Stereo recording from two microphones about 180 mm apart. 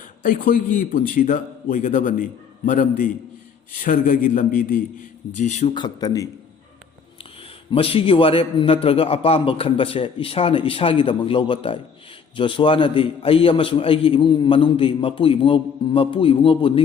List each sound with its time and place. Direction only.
0.2 s a man's voice: 50° left (ahead or behind)
5.7 s a man's voice: 25° left (ahead or behind)
7.7 s a man's voice: 30° left (ahead or behind)